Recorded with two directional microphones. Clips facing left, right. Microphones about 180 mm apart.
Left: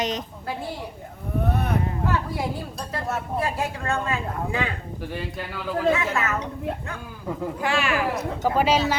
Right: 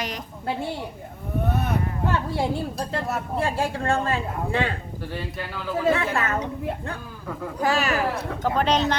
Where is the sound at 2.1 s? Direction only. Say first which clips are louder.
Right 5 dB; 30° right (ahead or behind).